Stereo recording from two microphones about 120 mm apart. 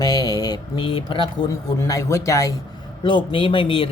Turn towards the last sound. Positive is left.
turn(degrees=45)  # may be behind; listen again after turning